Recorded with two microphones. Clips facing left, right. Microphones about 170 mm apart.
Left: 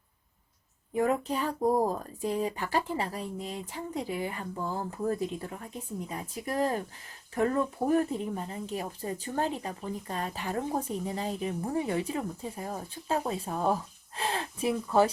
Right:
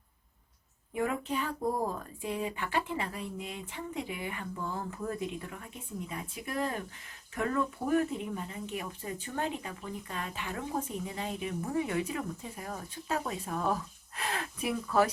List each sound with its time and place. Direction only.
0.9 s speech: 35° left (ahead or behind)